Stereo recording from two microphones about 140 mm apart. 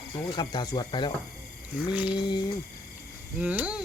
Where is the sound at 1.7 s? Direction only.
10° right (ahead or behind).